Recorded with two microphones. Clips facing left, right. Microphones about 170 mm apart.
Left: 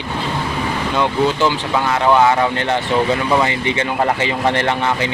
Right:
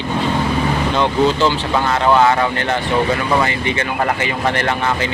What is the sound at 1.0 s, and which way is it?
Speech, 10° left (ahead or behind).